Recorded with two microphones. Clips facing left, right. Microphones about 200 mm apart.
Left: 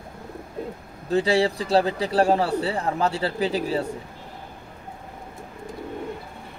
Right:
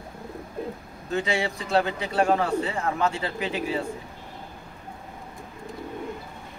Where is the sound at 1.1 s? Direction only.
35° left (ahead or behind).